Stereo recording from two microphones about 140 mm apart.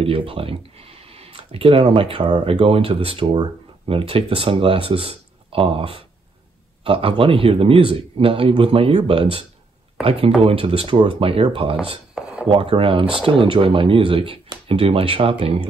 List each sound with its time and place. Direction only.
0.0 s speech: 40° right (ahead or behind)
12.2 s dishes: 5° right (ahead or behind)
12.4 s speech: 40° right (ahead or behind)